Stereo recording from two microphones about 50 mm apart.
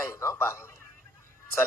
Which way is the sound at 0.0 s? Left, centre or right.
Left.